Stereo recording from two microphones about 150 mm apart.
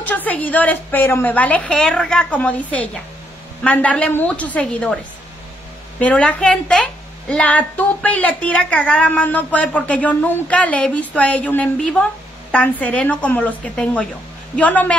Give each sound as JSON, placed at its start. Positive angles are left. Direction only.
{"t": 0.0, "sound": "a woman's voice", "side_deg": 10}